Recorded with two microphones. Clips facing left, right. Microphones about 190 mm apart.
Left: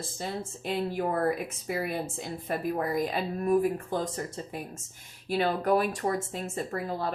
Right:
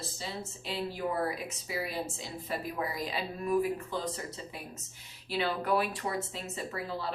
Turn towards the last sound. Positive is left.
turn(degrees=50)  # may be behind; listen again after turning